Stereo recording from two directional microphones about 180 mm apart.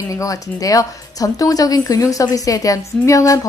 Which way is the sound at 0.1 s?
20° left (ahead or behind).